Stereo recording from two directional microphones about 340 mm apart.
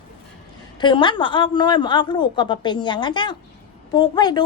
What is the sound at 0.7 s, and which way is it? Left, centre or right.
A woman's voice, centre.